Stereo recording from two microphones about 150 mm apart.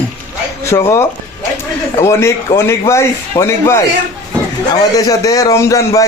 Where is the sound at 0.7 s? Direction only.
20° left (ahead or behind).